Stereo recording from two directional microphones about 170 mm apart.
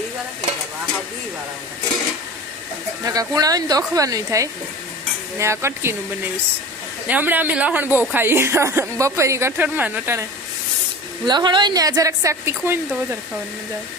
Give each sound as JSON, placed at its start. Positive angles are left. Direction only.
{"t": 3.0, "sound": "a woman's voice", "side_deg": -20}
{"t": 11.3, "sound": "a woman's voice", "side_deg": -25}